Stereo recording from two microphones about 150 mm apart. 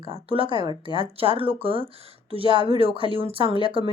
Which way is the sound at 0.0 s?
35° right (ahead or behind).